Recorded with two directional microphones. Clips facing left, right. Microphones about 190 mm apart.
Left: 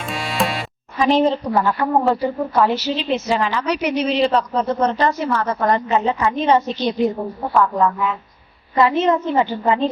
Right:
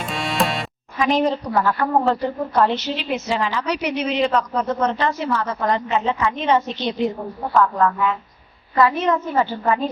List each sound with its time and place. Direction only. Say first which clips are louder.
0.0 s music: even; centre (ahead or behind)
0.9 s a woman's voice: left 3 dB; 30° left (ahead or behind)
1.8 s a woman's voice: left 2 dB; 10° left (ahead or behind)
2.9 s a woman's voice: left 4 dB; 20° left (ahead or behind)
3.2 s a woman's voice: left 3 dB; 55° left (ahead or behind)
4.0 s speech: left 2 dB; 35° left (ahead or behind)
7.5 s a woman's voice: left 1 dB; 10° left (ahead or behind)
8.7 s a woman's voice: left 2 dB; 25° left (ahead or behind)